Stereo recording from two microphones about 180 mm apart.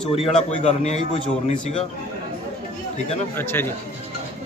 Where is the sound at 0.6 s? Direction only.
35° left (ahead or behind).